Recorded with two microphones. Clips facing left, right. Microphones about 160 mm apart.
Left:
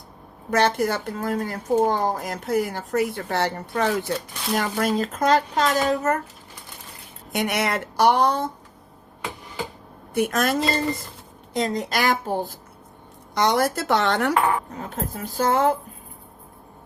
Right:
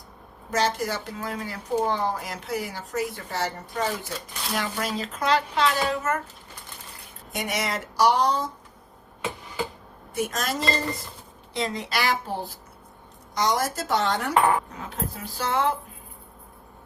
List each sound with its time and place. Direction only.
0.5 s speech: 55° left (ahead or behind)
4.5 s speech: 50° left (ahead or behind)
7.3 s speech: 60° left (ahead or behind)
10.2 s speech: 55° left (ahead or behind)
11.5 s speech: 45° left (ahead or behind)
13.3 s speech: 65° left (ahead or behind)
14.8 s speech: 45° left (ahead or behind)